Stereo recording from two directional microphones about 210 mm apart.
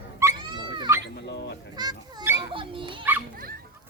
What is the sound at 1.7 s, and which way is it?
Children playing, 20° right (ahead or behind).